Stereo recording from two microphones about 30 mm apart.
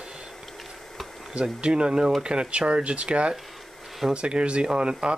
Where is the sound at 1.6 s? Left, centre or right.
Right.